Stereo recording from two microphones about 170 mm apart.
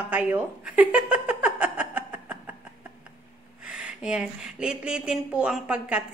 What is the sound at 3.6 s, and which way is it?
A woman's voice, 5° right (ahead or behind).